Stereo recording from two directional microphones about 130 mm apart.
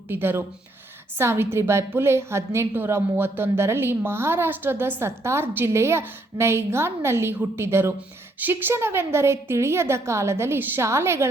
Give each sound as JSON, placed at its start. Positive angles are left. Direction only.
{"t": 0.1, "sound": "a woman's voice", "side_deg": -15}